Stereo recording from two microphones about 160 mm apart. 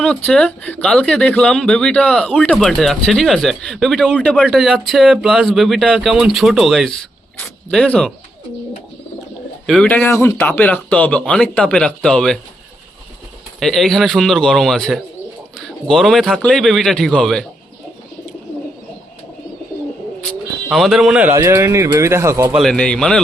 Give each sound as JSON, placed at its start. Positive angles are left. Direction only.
{"t": 0.0, "sound": "speech", "side_deg": 5}
{"t": 9.6, "sound": "speech", "side_deg": 10}
{"t": 13.6, "sound": "speech", "side_deg": 0}
{"t": 20.7, "sound": "speech", "side_deg": 0}
{"t": 21.3, "sound": "speech", "side_deg": -15}
{"t": 22.5, "sound": "speech", "side_deg": 5}